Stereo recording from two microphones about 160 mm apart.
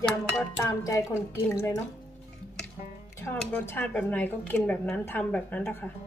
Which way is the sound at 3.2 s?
15° left (ahead or behind).